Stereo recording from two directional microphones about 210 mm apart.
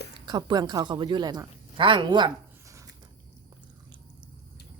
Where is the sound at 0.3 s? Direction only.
20° right (ahead or behind).